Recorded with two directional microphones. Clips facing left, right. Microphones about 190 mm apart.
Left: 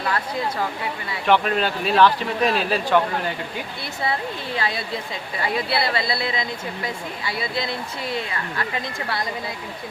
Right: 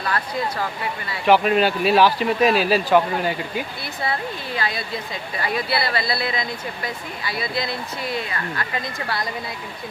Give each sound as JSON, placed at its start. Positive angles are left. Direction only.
{"t": 1.3, "sound": "speech", "side_deg": -10}
{"t": 4.5, "sound": "speech", "side_deg": 25}